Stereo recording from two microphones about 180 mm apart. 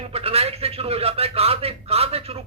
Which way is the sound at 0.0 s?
35° right (ahead or behind).